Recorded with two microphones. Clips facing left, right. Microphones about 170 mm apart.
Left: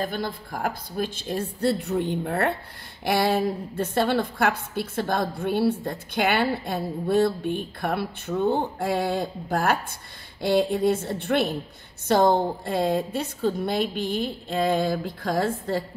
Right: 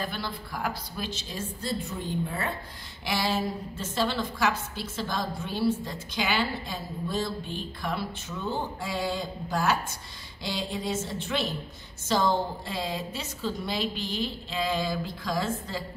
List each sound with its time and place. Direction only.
0.0 s a woman's voice: 45° left (ahead or behind)